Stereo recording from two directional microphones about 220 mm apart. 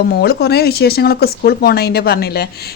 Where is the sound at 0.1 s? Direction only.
45° left (ahead or behind).